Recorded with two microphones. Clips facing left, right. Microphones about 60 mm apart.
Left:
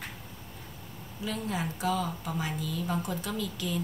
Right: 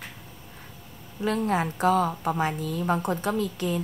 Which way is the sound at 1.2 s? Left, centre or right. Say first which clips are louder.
Right 8 dB; right.